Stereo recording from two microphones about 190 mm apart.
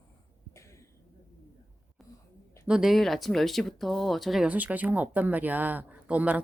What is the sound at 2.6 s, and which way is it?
Speech, 5° right (ahead or behind).